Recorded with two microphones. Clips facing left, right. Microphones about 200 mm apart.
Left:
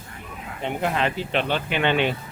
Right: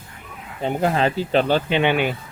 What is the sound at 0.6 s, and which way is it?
Speech, 35° right (ahead or behind).